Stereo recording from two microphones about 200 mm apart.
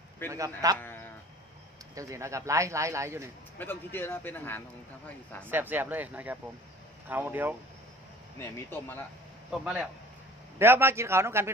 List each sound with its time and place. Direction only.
0.3 s speech: 15° right (ahead or behind)
0.7 s sheep: 10° left (ahead or behind)
2.0 s speech: 15° right (ahead or behind)
3.5 s speech: 10° left (ahead or behind)
5.5 s speech: 10° right (ahead or behind)
8.4 s speech: 10° left (ahead or behind)
9.5 s a man's voice: 5° right (ahead or behind)